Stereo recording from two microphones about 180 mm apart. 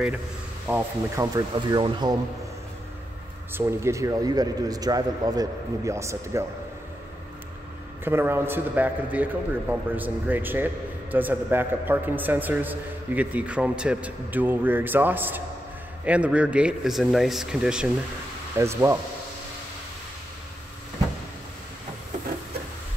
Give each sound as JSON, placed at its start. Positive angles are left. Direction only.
{"t": 0.7, "sound": "a man's voice", "side_deg": -15}
{"t": 3.5, "sound": "a man's voice", "side_deg": -15}
{"t": 8.0, "sound": "a man's voice", "side_deg": -10}